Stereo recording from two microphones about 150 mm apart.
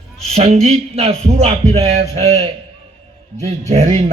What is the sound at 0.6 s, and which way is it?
A man's voice, 45° right (ahead or behind).